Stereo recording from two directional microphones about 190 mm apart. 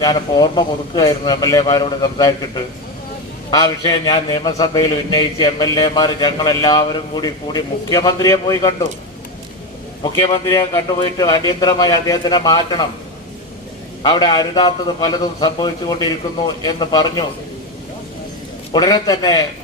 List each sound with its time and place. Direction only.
0.0 s a man's voice: 20° left (ahead or behind)
10.0 s a man's voice: 25° left (ahead or behind)
14.0 s a man's voice: 25° left (ahead or behind)
18.7 s a man's voice: 20° left (ahead or behind)